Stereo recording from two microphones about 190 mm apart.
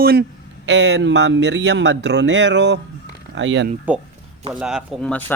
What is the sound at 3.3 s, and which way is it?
Speech, 80° right.